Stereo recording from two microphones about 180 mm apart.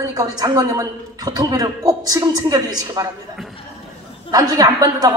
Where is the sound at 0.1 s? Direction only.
20° right (ahead or behind).